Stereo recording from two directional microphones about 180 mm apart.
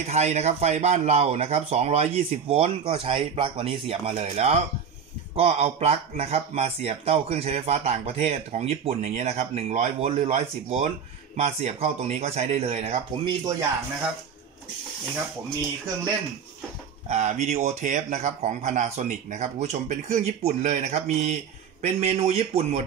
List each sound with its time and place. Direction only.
0.0 s speech: 40° right (ahead or behind)
17.1 s speech: 40° right (ahead or behind)